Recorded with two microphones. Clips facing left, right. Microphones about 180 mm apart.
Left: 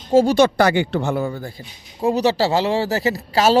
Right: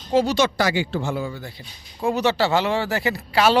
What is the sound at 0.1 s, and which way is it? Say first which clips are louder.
A man's voice: left 5 dB; 50° left (ahead or behind).